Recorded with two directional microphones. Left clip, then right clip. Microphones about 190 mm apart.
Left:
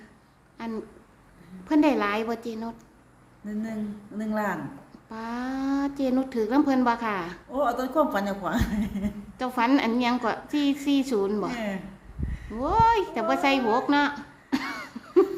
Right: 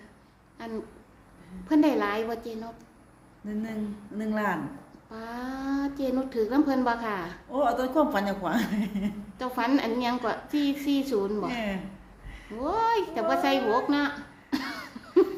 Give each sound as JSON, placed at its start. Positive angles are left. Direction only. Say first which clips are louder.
{"t": 0.6, "sound": "a woman's voice", "louder": "left 2 dB", "side_deg": 30}
{"t": 4.2, "sound": "a woman's voice", "louder": "even", "side_deg": 0}
{"t": 5.1, "sound": "a woman's voice", "louder": "left 4 dB", "side_deg": 30}
{"t": 7.5, "sound": "a woman's voice", "louder": "even", "side_deg": 5}
{"t": 9.4, "sound": "a woman's voice", "louder": "left 3 dB", "side_deg": 30}
{"t": 11.5, "sound": "a woman's voice", "louder": "even", "side_deg": 0}
{"t": 12.5, "sound": "a woman's voice", "louder": "left 5 dB", "side_deg": 30}
{"t": 14.5, "sound": "cough", "louder": "left 2 dB", "side_deg": 30}